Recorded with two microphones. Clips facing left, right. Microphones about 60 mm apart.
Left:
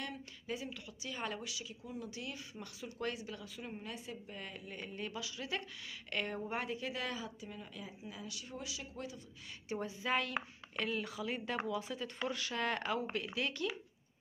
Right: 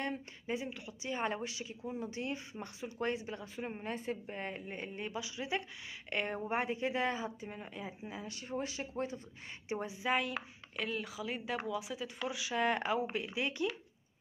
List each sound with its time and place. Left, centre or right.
0.0 s speech: right
9.7 s a woman's voice: centre
10.3 s a woman's voice: centre